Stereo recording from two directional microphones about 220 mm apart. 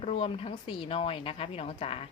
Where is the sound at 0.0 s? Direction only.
30° left (ahead or behind).